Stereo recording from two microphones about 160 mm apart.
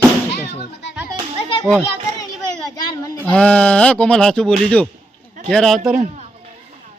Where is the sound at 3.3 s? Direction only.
5° left (ahead or behind).